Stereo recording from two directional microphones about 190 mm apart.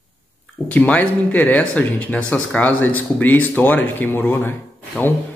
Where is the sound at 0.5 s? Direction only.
5° left (ahead or behind).